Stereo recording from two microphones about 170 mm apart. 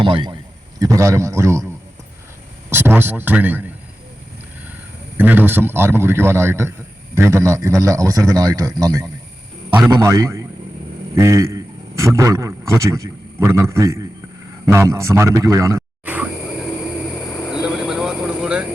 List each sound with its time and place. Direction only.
0.0 s a man's voice: 30° right (ahead or behind)
2.6 s a man's voice: 15° right (ahead or behind)
5.1 s a man's voice: 10° right (ahead or behind)
9.6 s a man's voice: 10° right (ahead or behind)
17.5 s vehicle: 5° right (ahead or behind)